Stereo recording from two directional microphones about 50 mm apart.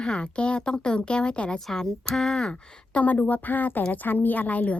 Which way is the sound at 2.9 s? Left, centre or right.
Left.